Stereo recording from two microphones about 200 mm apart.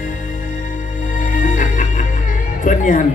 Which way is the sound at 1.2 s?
40° left (ahead or behind).